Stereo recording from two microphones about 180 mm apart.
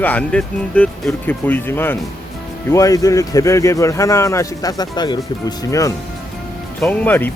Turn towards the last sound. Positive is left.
turn(degrees=10)  # may be behind; listen again after turning